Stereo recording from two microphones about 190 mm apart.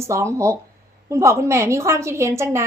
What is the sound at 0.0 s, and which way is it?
A woman's voice, 15° right (ahead or behind).